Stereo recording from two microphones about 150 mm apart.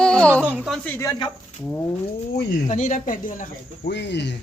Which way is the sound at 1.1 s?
25° left (ahead or behind).